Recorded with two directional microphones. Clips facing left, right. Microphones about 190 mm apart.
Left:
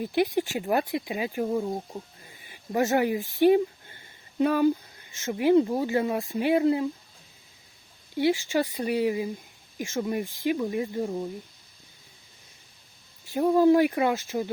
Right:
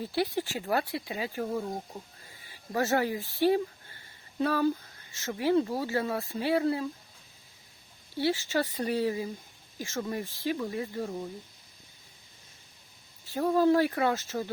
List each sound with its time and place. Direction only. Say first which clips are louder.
0.0 s speech: left 5 dB; 15° left (ahead or behind)
2.4 s a sound: left 4 dB; 20° left (ahead or behind)
5.1 s speech: left 5 dB; 20° left (ahead or behind)
8.1 s speech: left 4 dB; 15° left (ahead or behind)
13.2 s speech: left 4 dB; 15° left (ahead or behind)